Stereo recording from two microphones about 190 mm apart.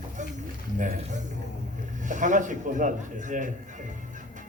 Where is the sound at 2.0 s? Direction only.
40° right (ahead or behind).